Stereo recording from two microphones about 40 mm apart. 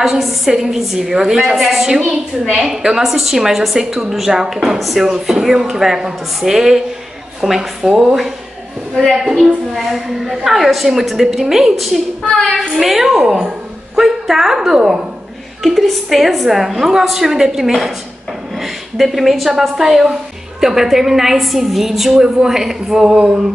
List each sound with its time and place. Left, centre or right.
0.0 s a woman's voice: centre
8.9 s a woman's voice: centre
15.6 s a woman's voice: centre
23.1 s a sound: right